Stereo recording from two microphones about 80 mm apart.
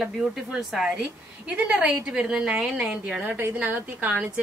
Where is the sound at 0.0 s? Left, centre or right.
Centre.